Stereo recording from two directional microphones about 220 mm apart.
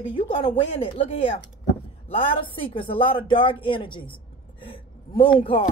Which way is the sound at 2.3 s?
25° left (ahead or behind).